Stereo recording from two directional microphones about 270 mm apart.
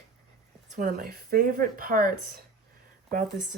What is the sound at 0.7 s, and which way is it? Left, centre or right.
Speech, right.